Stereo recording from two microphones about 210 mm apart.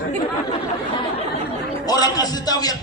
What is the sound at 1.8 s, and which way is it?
Speech, 20° left (ahead or behind).